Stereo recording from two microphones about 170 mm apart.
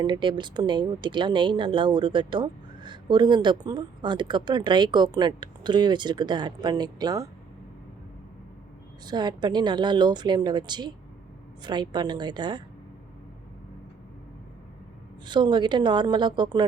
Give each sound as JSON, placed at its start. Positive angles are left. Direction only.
{"t": 0.0, "sound": "speech", "side_deg": -25}
{"t": 9.0, "sound": "speech", "side_deg": -25}
{"t": 15.3, "sound": "speech", "side_deg": -25}